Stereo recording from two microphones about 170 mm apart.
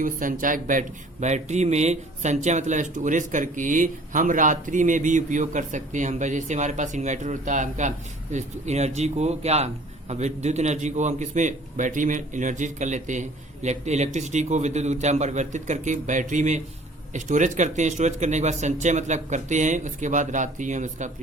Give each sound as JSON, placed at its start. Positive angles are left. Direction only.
{"t": 0.0, "sound": "speech", "side_deg": -50}